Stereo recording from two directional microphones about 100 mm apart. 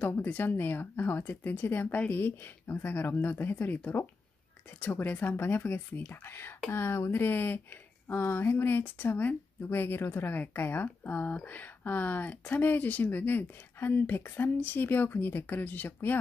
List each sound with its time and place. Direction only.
0.0 s speech: 20° left (ahead or behind)